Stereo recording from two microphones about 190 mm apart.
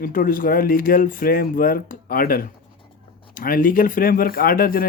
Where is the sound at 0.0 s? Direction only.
50° left (ahead or behind).